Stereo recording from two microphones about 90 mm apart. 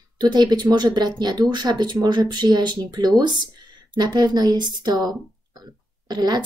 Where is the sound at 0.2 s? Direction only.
50° right (ahead or behind).